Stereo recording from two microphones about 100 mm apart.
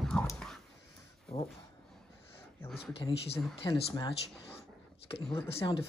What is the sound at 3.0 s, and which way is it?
Speech, 65° left (ahead or behind).